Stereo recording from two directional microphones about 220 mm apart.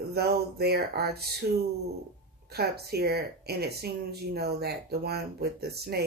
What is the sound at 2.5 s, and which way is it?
Speech, 45° right (ahead or behind).